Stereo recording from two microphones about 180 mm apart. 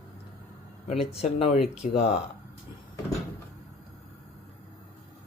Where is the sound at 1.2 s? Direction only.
35° left (ahead or behind).